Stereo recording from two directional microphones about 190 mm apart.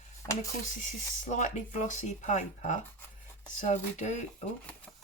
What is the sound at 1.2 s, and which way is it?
Speech, 40° left (ahead or behind).